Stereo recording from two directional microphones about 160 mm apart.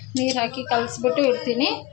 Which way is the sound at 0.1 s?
5° left (ahead or behind).